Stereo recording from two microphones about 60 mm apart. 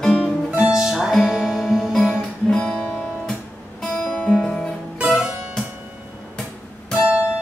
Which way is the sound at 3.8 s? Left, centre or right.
Centre.